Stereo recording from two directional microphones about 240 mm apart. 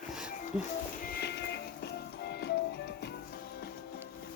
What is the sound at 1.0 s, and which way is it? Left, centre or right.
Music, left.